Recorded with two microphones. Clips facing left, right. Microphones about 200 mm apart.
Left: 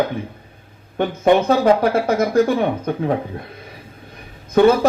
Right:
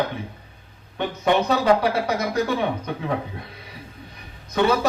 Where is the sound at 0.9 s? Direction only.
50° left (ahead or behind).